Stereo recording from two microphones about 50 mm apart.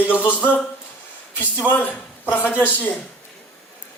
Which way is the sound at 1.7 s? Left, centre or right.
Left.